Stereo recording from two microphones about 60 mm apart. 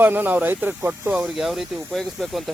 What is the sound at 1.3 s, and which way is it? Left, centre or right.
Speech, centre.